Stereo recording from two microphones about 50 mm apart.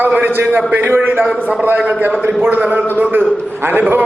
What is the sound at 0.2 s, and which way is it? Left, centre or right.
A man's voice, right.